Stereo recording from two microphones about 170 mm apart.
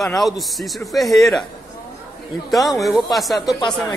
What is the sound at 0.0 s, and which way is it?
A man's voice, centre (ahead or behind).